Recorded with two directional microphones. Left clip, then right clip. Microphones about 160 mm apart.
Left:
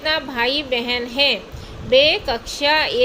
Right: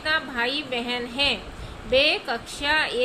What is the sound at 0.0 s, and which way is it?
A woman's voice, 30° left (ahead or behind).